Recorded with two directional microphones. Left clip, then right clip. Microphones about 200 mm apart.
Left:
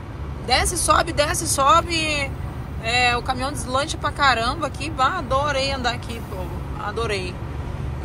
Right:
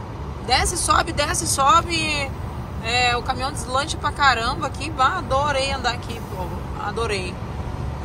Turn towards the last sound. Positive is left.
turn(degrees=-20)  # may be behind; listen again after turning